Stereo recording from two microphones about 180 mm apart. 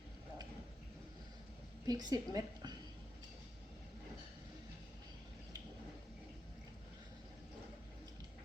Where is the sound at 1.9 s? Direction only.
20° right (ahead or behind).